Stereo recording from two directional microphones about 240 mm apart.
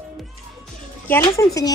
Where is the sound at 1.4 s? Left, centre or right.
Centre.